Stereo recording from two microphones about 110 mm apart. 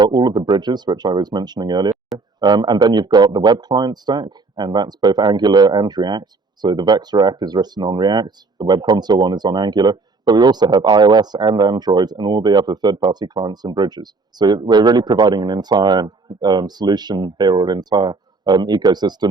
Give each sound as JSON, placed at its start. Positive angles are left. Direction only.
{"t": 0.0, "sound": "speech", "side_deg": -40}